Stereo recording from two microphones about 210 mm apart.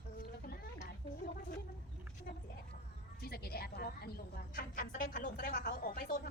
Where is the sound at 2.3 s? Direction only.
40° left (ahead or behind).